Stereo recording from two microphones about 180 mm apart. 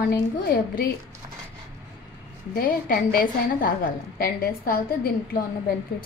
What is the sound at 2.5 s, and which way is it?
A woman's voice, 55° left (ahead or behind).